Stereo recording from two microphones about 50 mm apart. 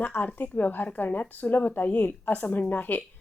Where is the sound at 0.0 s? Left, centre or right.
Left.